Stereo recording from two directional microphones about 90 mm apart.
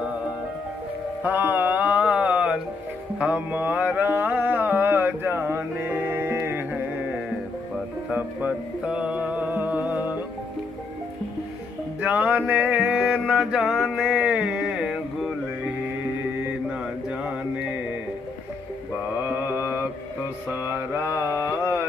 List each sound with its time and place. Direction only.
1.2 s music: 20° right (ahead or behind)
8.1 s music: 15° right (ahead or behind)
12.0 s music: 15° right (ahead or behind)
13.3 s mantra: 5° right (ahead or behind)
14.6 s carnatic music: 5° right (ahead or behind)
19.1 s mantra: 20° right (ahead or behind)